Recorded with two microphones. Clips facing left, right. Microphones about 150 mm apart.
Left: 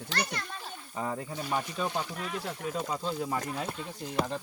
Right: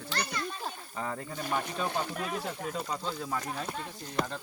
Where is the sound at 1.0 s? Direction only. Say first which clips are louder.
Left 3 dB; 10° left (ahead or behind).